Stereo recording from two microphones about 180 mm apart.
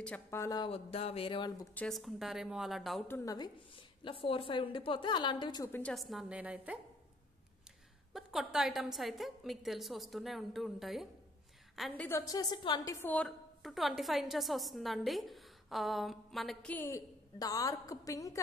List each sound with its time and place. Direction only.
0.0 s speech: 10° left (ahead or behind)
0.7 s a sound: 30° left (ahead or behind)
1.8 s a woman's voice: centre (ahead or behind)
3.1 s a woman's voice: 20° left (ahead or behind)
5.7 s a woman's voice: 5° left (ahead or behind)
8.1 s a woman's voice: centre (ahead or behind)
11.9 s a woman's voice: 10° left (ahead or behind)